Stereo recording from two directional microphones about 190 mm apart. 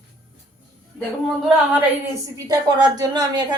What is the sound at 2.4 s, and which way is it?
Speech, 20° right (ahead or behind).